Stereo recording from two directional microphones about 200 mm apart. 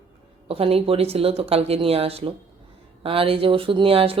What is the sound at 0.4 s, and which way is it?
Speech, 30° right (ahead or behind).